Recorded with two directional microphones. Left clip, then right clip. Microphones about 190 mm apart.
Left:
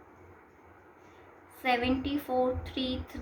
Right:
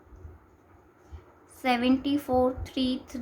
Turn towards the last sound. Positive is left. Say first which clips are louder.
# right 4 dB
turn(degrees=-45)  # may be behind; listen again after turning